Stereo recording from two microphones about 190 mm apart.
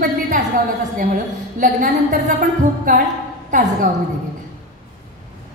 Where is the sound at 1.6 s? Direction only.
40° right (ahead or behind).